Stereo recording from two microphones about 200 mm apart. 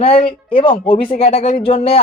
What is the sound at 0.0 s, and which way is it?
Speech, 30° left (ahead or behind).